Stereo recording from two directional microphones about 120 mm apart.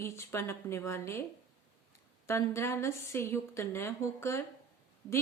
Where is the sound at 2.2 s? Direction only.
25° left (ahead or behind).